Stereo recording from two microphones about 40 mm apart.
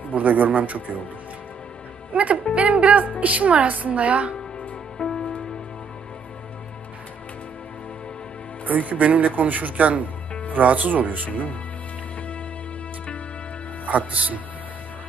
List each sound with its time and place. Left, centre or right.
0.1 s a woman's voice: right
2.1 s a woman's voice: right
5.0 s music: centre
8.6 s a woman's voice: right
11.3 s speech: left
14.1 s a woman's voice: right